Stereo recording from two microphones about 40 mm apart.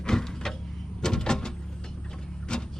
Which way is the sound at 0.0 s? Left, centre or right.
Centre.